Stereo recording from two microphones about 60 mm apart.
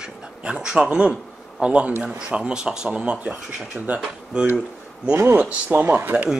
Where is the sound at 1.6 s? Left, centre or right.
Centre.